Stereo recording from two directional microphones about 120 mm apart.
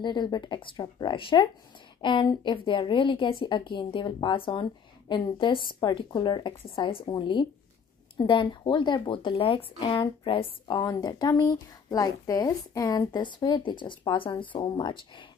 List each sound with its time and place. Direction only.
0.0 s a woman's voice: 40° left (ahead or behind)